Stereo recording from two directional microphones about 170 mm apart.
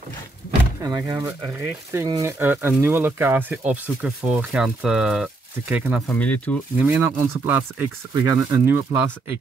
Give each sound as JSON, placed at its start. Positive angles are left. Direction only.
{"t": 0.8, "sound": "speech", "side_deg": -20}
{"t": 6.1, "sound": "speech", "side_deg": 10}
{"t": 6.8, "sound": "speech", "side_deg": -10}